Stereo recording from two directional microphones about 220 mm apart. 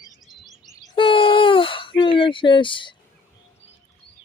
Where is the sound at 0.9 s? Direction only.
25° left (ahead or behind).